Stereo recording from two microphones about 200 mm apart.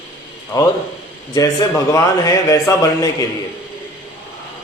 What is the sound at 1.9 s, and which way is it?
A man's voice, 15° left (ahead or behind).